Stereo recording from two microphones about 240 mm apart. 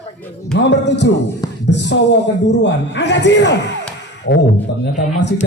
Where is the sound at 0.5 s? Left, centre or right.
Left.